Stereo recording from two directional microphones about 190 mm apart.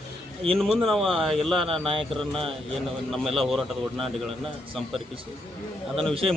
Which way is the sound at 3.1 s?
Centre (ahead or behind).